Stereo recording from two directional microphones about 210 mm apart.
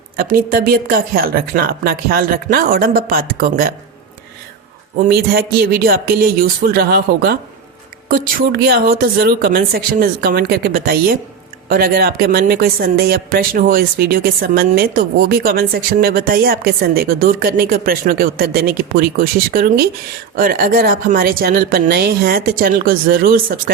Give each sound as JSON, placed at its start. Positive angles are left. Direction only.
{"t": 0.2, "sound": "speech", "side_deg": -45}
{"t": 5.0, "sound": "speech", "side_deg": -50}